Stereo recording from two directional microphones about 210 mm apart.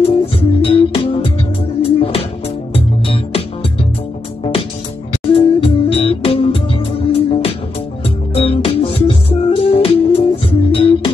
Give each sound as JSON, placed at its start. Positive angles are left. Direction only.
{"t": 0.0, "sound": "music", "side_deg": 25}
{"t": 5.3, "sound": "music", "side_deg": 25}